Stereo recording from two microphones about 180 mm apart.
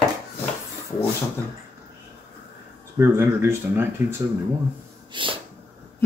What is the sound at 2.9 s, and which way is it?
Speech, 15° right (ahead or behind).